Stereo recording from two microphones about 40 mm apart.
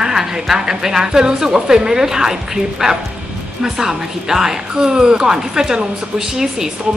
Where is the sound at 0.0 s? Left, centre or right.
Centre.